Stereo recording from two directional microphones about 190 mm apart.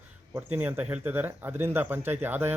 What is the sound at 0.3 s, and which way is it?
Speech, 10° right (ahead or behind).